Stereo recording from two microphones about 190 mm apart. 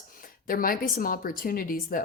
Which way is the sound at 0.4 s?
50° left (ahead or behind).